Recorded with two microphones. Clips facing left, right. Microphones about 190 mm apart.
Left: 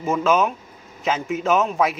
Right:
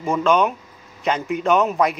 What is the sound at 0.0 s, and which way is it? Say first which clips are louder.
Speech: right 1 dB; 5° left (ahead or behind).